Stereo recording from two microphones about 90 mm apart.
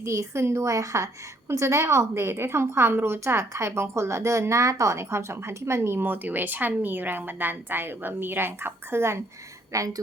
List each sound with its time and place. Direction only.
0.0 s a woman's voice: 30° right (ahead or behind)